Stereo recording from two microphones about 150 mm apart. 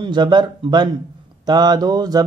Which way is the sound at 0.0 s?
30° right (ahead or behind).